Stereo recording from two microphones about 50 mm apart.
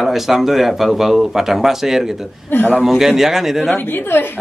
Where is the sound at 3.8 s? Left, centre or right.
Left.